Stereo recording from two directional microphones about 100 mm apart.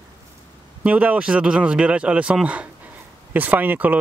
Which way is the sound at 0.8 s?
15° right (ahead or behind).